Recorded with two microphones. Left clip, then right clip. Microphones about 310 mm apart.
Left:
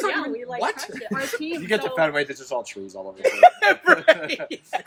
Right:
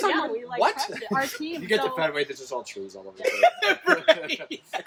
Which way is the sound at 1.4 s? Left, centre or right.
Centre.